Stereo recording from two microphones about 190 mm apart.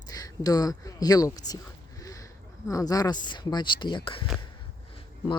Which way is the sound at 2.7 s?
20° left (ahead or behind).